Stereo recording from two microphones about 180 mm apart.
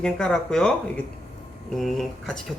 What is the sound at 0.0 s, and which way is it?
Speech, 5° left (ahead or behind).